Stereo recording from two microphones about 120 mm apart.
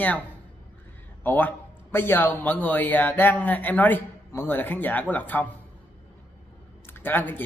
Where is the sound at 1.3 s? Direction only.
15° left (ahead or behind).